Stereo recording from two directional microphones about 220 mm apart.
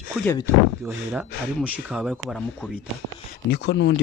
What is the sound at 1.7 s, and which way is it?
Speech, 5° right (ahead or behind).